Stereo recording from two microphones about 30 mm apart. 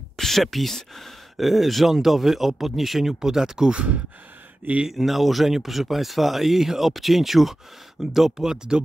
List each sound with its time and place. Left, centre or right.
0.2 s speech: centre
1.3 s a man's voice: centre; by 3.7 s right
3.7 s speech: right
4.8 s a man's voice: centre
8.7 s speech: right